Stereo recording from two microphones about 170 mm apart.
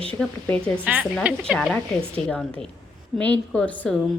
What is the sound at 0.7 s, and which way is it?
A woman's voice, 10° right (ahead or behind).